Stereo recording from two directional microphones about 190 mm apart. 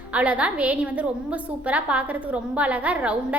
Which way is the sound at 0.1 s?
5° right (ahead or behind).